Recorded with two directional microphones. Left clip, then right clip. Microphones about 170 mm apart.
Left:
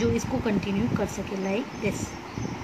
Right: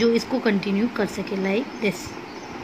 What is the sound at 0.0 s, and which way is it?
Speech, 35° right (ahead or behind).